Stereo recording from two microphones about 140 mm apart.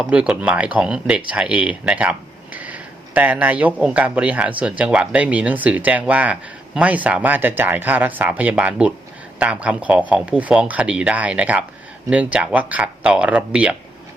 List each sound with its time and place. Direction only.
0.0 s speech: 5° right (ahead or behind)